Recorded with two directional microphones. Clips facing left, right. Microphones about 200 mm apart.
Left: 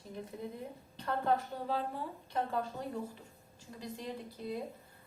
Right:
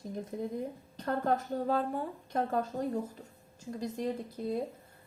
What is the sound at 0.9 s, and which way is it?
A woman's voice, 45° right (ahead or behind).